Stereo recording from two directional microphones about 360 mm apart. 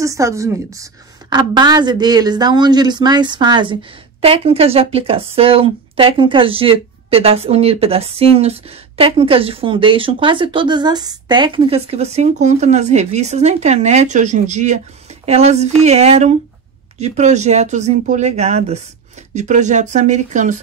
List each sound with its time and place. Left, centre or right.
0.0 s speech: centre